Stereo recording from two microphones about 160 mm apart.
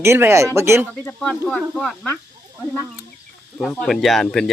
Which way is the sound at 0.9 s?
5° left (ahead or behind).